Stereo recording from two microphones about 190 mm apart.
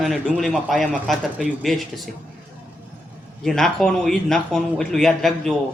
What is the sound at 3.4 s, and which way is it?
A man's voice, centre (ahead or behind).